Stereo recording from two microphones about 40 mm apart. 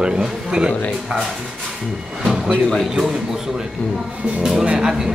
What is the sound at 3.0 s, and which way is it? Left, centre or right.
Speech, centre.